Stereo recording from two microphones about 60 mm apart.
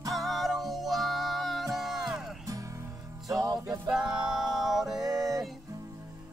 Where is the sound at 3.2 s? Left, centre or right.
Right.